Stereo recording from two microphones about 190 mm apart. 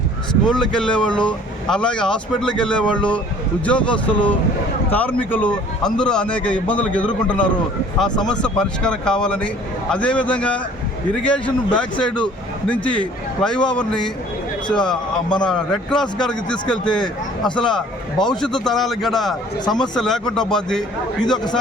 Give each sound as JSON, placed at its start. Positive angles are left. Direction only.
{"t": 0.5, "sound": "a man's voice", "side_deg": 5}
{"t": 14.7, "sound": "a man's voice", "side_deg": 5}
{"t": 19.6, "sound": "speech", "side_deg": 20}
{"t": 20.0, "sound": "a man's voice", "side_deg": 5}